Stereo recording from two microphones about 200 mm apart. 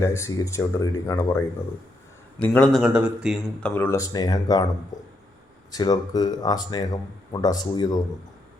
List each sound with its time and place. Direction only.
0.0 s speech: 15° left (ahead or behind)
2.4 s speech: 5° left (ahead or behind)
3.8 s speech: 15° left (ahead or behind)
5.7 s speech: 20° left (ahead or behind)